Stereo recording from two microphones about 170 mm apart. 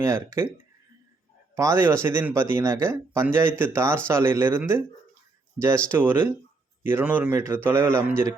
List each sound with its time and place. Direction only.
0.0 s speech: 15° right (ahead or behind)
1.5 s speech: 15° right (ahead or behind)